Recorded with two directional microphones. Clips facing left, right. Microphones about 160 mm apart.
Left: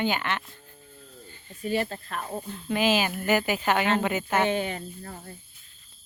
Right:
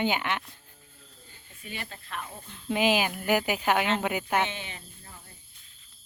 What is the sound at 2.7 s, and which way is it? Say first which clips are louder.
Speech: left 1 dB; 15° right (ahead or behind).